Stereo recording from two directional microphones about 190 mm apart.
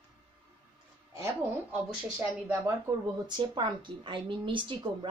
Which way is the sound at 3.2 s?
25° right (ahead or behind).